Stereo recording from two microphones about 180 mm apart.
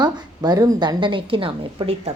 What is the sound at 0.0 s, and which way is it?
A woman's voice, 20° right (ahead or behind).